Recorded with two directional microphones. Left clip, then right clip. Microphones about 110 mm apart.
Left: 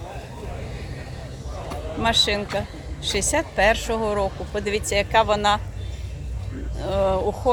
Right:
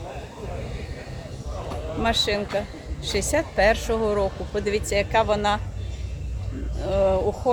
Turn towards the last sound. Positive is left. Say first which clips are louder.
# right 1 dB
turn(degrees=-5)  # may be behind; listen again after turning